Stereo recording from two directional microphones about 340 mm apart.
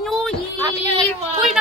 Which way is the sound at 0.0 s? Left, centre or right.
Centre.